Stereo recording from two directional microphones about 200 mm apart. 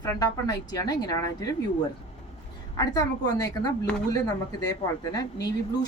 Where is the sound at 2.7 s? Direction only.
20° left (ahead or behind).